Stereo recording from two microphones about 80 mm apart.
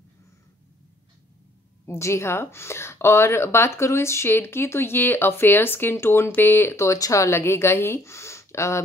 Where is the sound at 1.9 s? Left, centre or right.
Left.